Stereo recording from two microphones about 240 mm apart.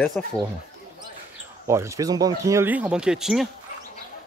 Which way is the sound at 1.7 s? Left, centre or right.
Centre.